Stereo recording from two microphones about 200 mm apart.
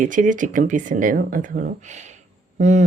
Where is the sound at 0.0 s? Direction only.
40° right (ahead or behind).